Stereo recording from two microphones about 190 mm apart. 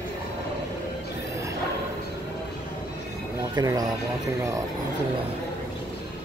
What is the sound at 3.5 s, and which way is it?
Speech, 20° right (ahead or behind).